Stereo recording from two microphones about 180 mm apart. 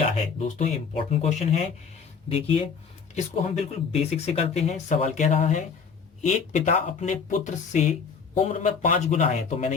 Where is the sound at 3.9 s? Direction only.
35° left (ahead or behind).